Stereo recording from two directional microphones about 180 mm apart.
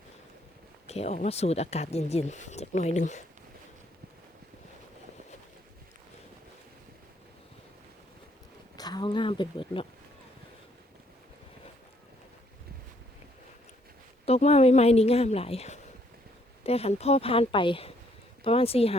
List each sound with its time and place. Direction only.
0.9 s speech: 35° left (ahead or behind)
8.7 s a sound: 25° left (ahead or behind)
14.3 s speech: 35° left (ahead or behind)